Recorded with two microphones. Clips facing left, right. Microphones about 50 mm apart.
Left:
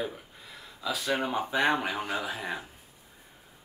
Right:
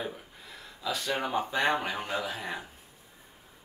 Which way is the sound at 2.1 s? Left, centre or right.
Left.